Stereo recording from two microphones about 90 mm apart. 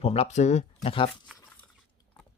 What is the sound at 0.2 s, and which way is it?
Speech, 90° left.